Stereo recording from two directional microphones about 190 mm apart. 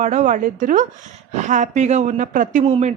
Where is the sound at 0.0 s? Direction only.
40° right (ahead or behind).